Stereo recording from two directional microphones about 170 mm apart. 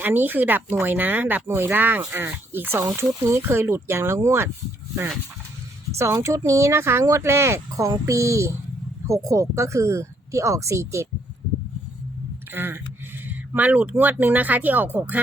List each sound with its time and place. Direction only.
0.0 s speech: 10° right (ahead or behind)
6.0 s speech: 15° right (ahead or behind)
12.5 s speech: 10° right (ahead or behind)